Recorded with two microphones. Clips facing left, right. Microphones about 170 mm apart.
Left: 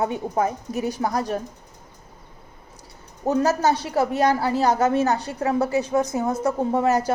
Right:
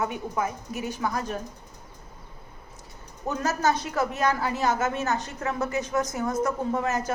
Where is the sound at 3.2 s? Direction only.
30° left (ahead or behind).